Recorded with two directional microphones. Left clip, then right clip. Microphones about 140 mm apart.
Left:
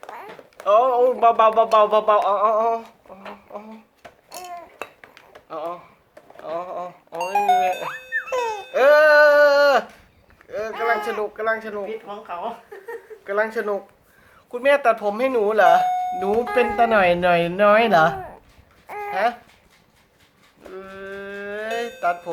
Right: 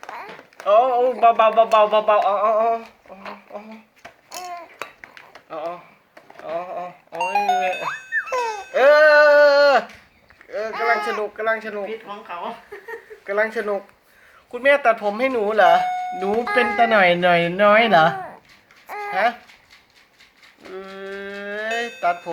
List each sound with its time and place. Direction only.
0.6 s speech: 10° left (ahead or behind)
5.5 s speech: 5° left (ahead or behind)
6.4 s a sound: 10° left (ahead or behind)
7.9 s music: 25° left (ahead or behind)
8.7 s music: centre (ahead or behind)
10.5 s a sound: 5° left (ahead or behind)
11.2 s speech: 5° left (ahead or behind)
11.9 s speech: 60° left (ahead or behind)
13.2 s speech: centre (ahead or behind)
18.9 s a sound: 25° left (ahead or behind)
19.1 s speech: 5° left (ahead or behind)
20.7 s livestock: 10° right (ahead or behind)
22.0 s music: 5° right (ahead or behind)